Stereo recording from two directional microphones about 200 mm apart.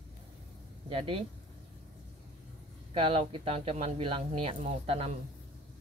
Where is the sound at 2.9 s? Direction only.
25° right (ahead or behind).